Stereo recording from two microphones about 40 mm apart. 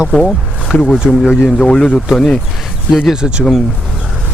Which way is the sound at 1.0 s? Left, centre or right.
Centre.